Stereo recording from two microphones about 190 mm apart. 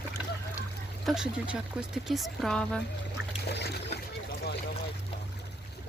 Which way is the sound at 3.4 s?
60° left (ahead or behind).